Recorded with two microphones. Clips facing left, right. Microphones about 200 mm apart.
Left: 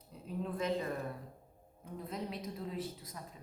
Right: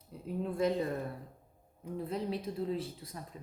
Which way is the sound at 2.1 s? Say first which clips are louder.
Right 4 dB; 30° right (ahead or behind).